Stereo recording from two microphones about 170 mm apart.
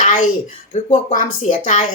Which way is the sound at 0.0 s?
45° left (ahead or behind).